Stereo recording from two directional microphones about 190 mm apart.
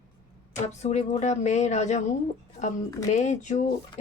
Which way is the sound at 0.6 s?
35° left (ahead or behind).